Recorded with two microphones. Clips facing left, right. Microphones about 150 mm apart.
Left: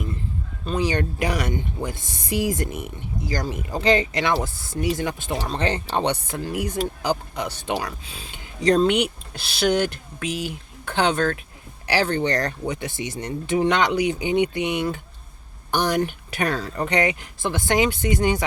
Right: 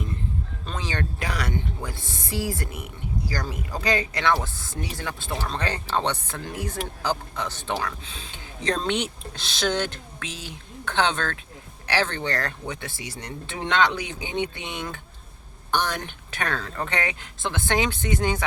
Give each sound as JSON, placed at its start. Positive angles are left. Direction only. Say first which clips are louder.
{"t": 0.6, "sound": "speech", "louder": "left 9 dB", "side_deg": 10}